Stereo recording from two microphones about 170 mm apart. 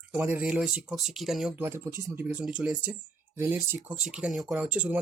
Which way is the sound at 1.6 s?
15° right (ahead or behind).